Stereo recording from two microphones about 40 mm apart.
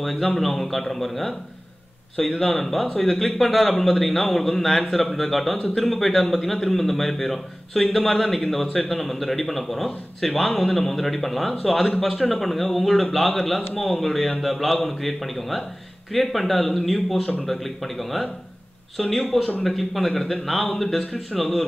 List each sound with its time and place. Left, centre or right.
0.0 s a man's voice: centre
21.0 s speech: left
21.4 s a man's voice: centre